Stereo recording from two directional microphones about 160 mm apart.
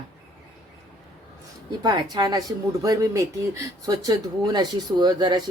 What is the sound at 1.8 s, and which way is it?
Speech, 25° right (ahead or behind).